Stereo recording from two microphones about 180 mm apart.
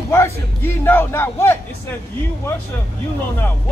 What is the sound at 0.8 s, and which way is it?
Speech, 10° left (ahead or behind).